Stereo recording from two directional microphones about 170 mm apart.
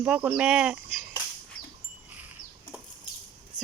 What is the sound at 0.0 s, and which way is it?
Speech, 5° right (ahead or behind).